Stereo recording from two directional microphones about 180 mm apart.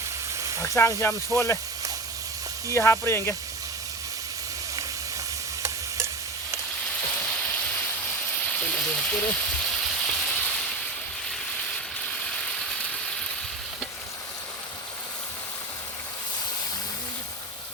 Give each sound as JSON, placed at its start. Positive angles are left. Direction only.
{"t": 0.3, "sound": "frying", "side_deg": -15}
{"t": 0.6, "sound": "speech", "side_deg": 15}
{"t": 2.6, "sound": "speech", "side_deg": 15}
{"t": 7.2, "sound": "rain", "side_deg": 10}
{"t": 8.4, "sound": "sizzle", "side_deg": 10}
{"t": 9.6, "sound": "a sound", "side_deg": 0}
{"t": 11.3, "sound": "ratchet", "side_deg": 5}